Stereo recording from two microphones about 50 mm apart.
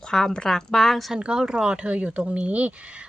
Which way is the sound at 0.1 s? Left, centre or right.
Centre.